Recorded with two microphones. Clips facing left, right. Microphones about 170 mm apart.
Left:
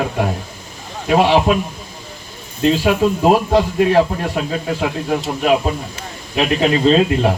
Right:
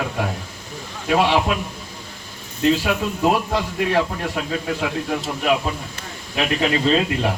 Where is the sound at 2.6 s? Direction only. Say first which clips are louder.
Left 5 dB; 30° left (ahead or behind).